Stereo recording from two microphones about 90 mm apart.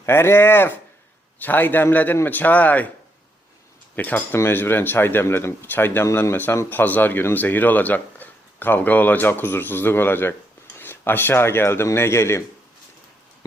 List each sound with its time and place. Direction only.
0.0 s speech: 30° left (ahead or behind)
3.9 s speech: 20° left (ahead or behind)